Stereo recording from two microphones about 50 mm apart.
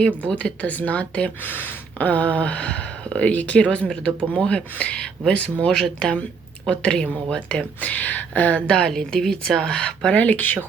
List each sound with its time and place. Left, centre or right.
0.3 s speech: left
1.5 s speech: left
5.6 s speech: centre; by 8.6 s left
8.6 s speech: centre
8.9 s speech: centre
10.2 s speech: left